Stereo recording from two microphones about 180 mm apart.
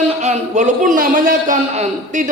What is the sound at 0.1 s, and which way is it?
A man's voice, 40° right (ahead or behind).